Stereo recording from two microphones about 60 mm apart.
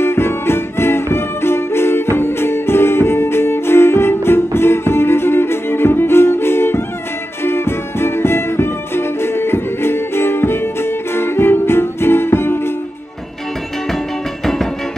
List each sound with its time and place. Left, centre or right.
0.0 s music: left
14.4 s music: centre